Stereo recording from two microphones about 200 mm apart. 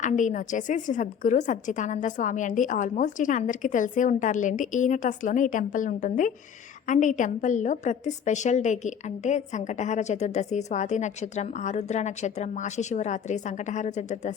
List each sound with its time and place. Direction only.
0.0 s a woman's voice: 40° left (ahead or behind)